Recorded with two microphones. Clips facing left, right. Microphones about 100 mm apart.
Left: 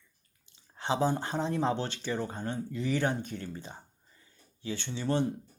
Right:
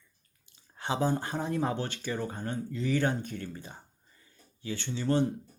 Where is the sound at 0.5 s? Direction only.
20° left (ahead or behind).